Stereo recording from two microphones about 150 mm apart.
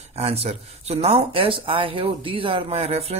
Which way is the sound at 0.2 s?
45° right (ahead or behind).